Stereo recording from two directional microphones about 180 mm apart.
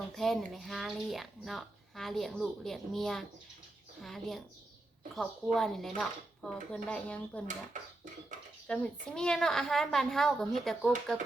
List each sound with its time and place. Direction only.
0.1 s speech: centre (ahead or behind)
7.7 s speech: 45° right (ahead or behind)
8.6 s speech: 5° left (ahead or behind)